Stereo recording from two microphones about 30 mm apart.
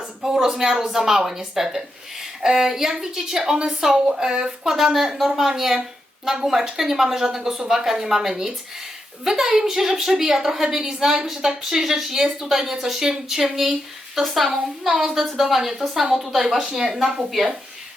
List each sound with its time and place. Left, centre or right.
0.3 s a woman's voice: right